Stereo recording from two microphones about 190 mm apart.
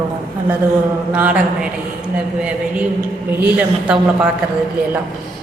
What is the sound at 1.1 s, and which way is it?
Speech, 5° right (ahead or behind).